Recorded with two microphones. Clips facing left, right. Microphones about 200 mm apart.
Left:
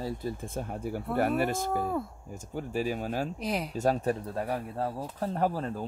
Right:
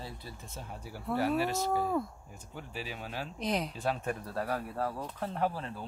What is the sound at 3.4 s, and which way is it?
Speech, 5° left (ahead or behind).